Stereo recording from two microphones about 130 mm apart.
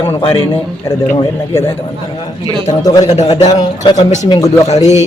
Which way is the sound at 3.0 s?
60° left (ahead or behind).